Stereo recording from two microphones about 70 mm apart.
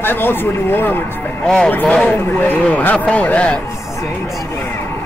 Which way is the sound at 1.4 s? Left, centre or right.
Centre.